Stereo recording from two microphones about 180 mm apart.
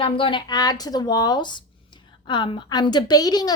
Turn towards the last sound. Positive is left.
turn(degrees=20)  # may be behind; listen again after turning